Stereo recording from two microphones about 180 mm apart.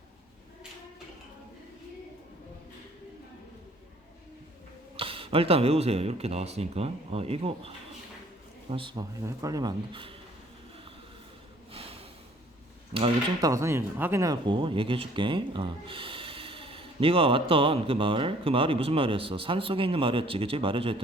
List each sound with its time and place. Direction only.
4.9 s speech: 30° right (ahead or behind)
8.7 s speech: 25° right (ahead or behind)
11.7 s snort: 35° right (ahead or behind)
13.4 s speech: 15° right (ahead or behind)